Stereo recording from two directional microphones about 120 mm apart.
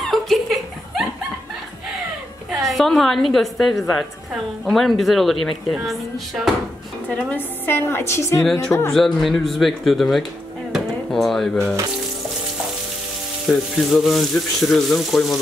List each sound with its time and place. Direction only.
0.0 s a sound: centre (ahead or behind)
2.5 s a woman's voice: centre (ahead or behind)
7.2 s a woman's voice: 15° left (ahead or behind)
8.5 s a woman's voice: 5° left (ahead or behind)
10.7 s a sound: centre (ahead or behind)
13.5 s a woman's voice: centre (ahead or behind)